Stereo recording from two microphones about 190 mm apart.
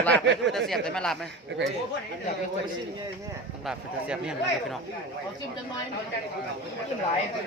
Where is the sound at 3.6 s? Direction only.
5° right (ahead or behind).